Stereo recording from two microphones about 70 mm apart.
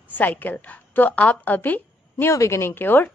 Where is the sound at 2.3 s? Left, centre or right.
Left.